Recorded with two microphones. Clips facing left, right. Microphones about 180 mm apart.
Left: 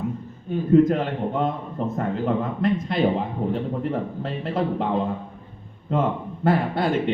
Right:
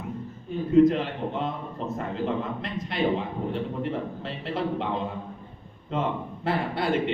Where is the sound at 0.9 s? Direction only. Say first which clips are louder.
Left 2 dB; 50° left (ahead or behind).